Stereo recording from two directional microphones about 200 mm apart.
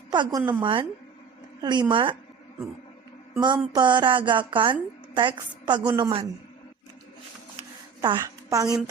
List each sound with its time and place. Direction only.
0.1 s a woman's voice: 20° right (ahead or behind)
3.3 s a woman's voice: 20° right (ahead or behind)
8.0 s a woman's voice: 20° right (ahead or behind)